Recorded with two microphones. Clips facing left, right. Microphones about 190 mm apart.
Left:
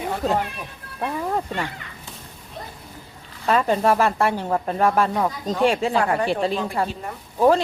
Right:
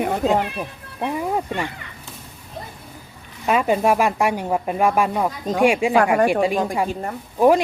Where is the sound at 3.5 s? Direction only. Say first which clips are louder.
Right 1 dB; 10° right (ahead or behind).